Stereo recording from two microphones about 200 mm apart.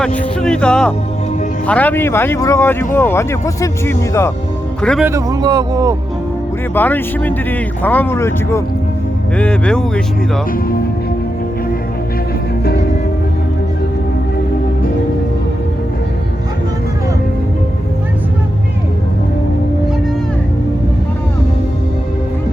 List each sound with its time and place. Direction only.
0.4 s speech: 5° left (ahead or behind)
4.8 s speech: 5° left (ahead or behind)
5.0 s speech: 15° right (ahead or behind)
6.7 s speech: 10° left (ahead or behind)